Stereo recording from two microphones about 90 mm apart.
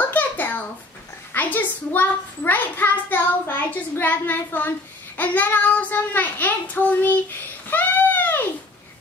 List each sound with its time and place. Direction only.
0.1 s a sound: 20° left (ahead or behind)
1.3 s a child's voice: 20° left (ahead or behind)
7.7 s baby cry: 20° left (ahead or behind)